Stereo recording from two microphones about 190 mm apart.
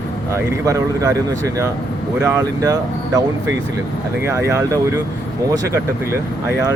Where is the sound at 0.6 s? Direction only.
15° right (ahead or behind).